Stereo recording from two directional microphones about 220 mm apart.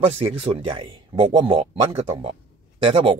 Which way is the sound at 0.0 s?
25° right (ahead or behind).